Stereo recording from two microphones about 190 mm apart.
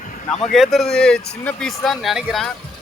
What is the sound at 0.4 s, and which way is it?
Speech, centre (ahead or behind).